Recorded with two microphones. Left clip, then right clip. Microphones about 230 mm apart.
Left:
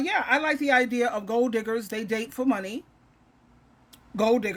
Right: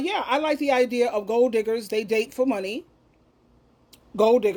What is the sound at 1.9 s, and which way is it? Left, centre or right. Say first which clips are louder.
Speech: right 6 dB; left.